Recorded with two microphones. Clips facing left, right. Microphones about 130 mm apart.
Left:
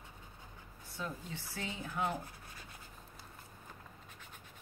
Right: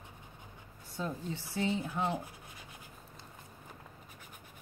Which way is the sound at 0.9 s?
25° right (ahead or behind).